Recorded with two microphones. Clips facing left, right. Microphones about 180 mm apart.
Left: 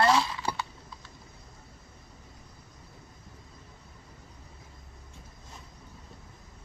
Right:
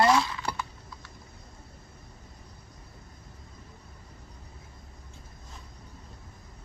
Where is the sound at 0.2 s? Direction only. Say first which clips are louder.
Even; 25° left (ahead or behind).